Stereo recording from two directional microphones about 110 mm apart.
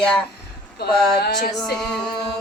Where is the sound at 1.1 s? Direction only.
5° left (ahead or behind).